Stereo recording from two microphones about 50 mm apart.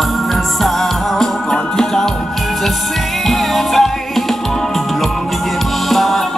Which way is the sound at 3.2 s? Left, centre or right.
Centre.